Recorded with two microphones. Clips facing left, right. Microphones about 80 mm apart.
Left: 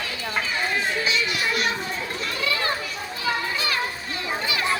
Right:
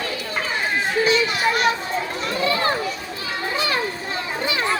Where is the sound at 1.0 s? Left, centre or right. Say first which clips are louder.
Right 6 dB; right.